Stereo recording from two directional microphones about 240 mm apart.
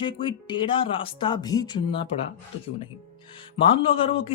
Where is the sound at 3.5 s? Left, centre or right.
Left.